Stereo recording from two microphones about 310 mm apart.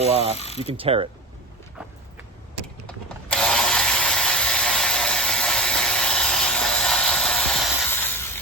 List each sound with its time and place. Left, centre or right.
0.0 s speech: centre
0.3 s ratchet: centre
0.6 s mechanisms: centre
2.8 s a sound: centre